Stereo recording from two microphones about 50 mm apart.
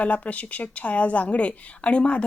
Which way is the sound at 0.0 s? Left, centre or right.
Left.